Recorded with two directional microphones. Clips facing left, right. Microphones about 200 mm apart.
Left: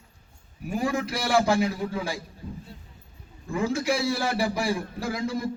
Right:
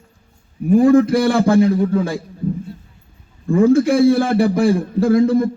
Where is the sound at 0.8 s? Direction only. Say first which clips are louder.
Right 15 dB; 55° right (ahead or behind).